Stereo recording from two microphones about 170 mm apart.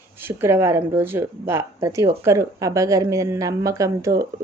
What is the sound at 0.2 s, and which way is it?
A woman's voice, 15° right (ahead or behind).